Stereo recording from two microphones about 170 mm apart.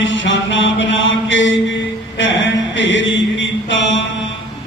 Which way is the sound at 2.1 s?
90° left.